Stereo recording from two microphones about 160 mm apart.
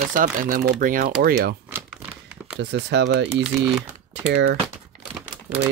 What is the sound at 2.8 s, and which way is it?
Speech, 90° right.